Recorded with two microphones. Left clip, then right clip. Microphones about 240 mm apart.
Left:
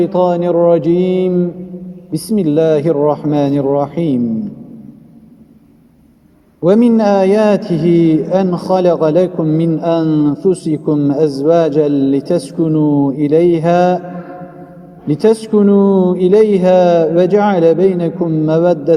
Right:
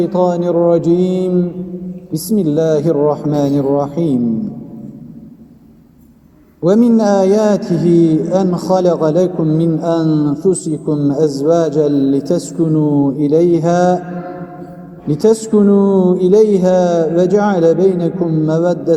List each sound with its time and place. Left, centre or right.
0.0 s a man's voice: left
6.7 s a man's voice: left
15.0 s a man's voice: left